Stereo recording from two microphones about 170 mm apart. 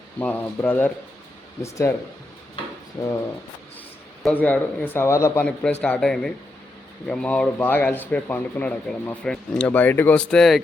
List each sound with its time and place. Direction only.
0.2 s speech: 10° left (ahead or behind)
3.0 s speech: 20° left (ahead or behind)
4.2 s speech: 10° left (ahead or behind)
5.8 s speech: 5° left (ahead or behind)